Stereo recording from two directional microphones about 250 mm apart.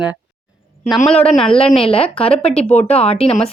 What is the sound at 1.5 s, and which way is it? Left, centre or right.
Speech, left.